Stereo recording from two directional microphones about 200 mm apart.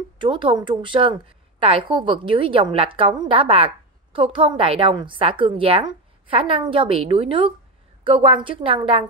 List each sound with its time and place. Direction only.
0.2 s a woman's voice: 25° right (ahead or behind)